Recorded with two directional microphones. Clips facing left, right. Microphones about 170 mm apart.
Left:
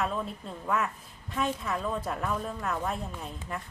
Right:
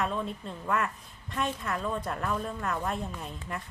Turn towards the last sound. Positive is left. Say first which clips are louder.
# even
turn(degrees=0)  # may be behind; listen again after turning